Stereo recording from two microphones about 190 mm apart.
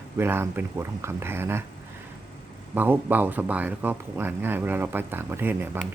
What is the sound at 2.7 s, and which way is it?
Speech, 10° right (ahead or behind).